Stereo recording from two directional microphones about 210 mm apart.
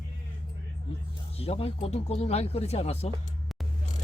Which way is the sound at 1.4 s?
30° left (ahead or behind).